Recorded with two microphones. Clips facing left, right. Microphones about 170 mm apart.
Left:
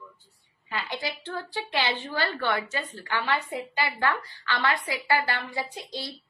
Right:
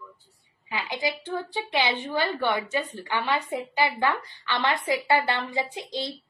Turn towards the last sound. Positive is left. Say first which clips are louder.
# right 4 dB
turn(degrees=-20)  # may be behind; listen again after turning